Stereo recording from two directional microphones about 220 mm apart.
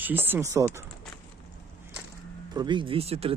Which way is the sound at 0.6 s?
10° right (ahead or behind).